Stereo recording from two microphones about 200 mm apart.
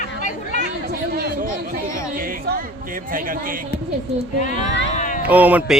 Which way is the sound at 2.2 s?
45° right (ahead or behind).